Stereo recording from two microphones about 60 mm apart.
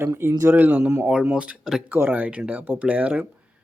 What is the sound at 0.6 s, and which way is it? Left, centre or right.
Speech, right.